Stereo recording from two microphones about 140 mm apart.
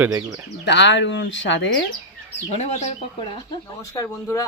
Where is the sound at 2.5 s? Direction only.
55° left (ahead or behind).